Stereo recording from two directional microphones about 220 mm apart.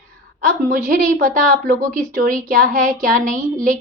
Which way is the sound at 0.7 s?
35° right (ahead or behind).